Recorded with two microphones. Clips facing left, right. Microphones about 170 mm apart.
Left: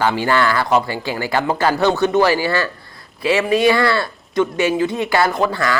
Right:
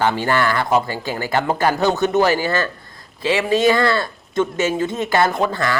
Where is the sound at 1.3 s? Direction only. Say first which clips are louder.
Even; 20° right (ahead or behind).